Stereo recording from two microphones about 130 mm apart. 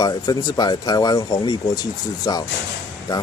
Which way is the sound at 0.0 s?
30° left (ahead or behind).